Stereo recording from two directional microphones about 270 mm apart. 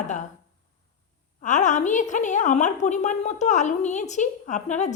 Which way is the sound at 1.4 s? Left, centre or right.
Left.